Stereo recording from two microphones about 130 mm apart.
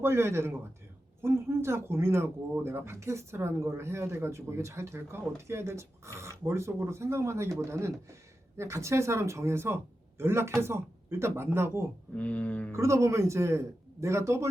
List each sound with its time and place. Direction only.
0.0 s speech: 20° right (ahead or behind)
12.1 s a sound: 10° left (ahead or behind)
12.7 s speech: 20° right (ahead or behind)